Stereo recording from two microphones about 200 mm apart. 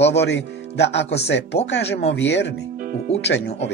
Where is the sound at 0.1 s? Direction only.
60° left (ahead or behind).